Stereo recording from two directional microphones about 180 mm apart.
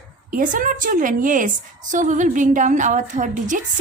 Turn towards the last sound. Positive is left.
turn(degrees=-45)  # may be behind; listen again after turning